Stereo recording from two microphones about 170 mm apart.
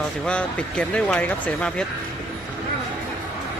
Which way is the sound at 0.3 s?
5° left (ahead or behind).